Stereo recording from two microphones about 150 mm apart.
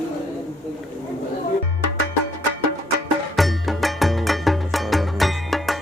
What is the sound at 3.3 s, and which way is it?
Music, centre (ahead or behind).